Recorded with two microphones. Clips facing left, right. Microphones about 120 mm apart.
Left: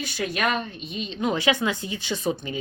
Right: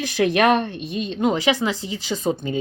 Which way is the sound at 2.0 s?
35° right (ahead or behind).